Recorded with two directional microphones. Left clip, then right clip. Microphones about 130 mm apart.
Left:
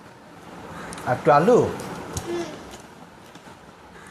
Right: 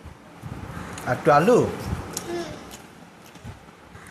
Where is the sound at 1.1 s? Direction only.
5° right (ahead or behind).